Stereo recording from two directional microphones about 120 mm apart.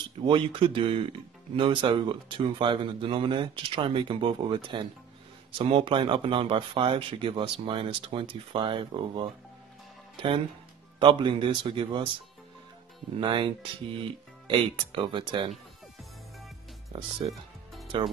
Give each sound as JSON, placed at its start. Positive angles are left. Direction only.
{"t": 0.2, "sound": "speech", "side_deg": -45}
{"t": 11.0, "sound": "speech", "side_deg": -45}
{"t": 13.2, "sound": "speech", "side_deg": -45}
{"t": 17.2, "sound": "speech", "side_deg": -50}